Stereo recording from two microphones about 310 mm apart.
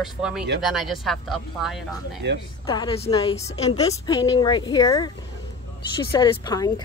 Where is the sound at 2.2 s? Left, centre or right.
Right.